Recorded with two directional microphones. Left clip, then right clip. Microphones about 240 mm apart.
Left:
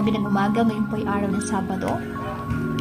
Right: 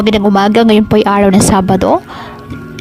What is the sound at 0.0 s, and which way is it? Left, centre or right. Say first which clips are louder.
A woman's voice: right 13 dB; right.